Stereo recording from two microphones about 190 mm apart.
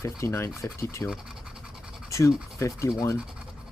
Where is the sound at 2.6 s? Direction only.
15° left (ahead or behind).